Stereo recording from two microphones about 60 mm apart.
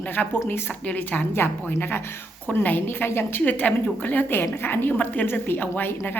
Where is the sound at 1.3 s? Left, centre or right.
Left.